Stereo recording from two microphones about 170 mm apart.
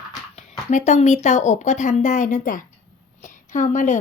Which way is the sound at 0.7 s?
45° left (ahead or behind).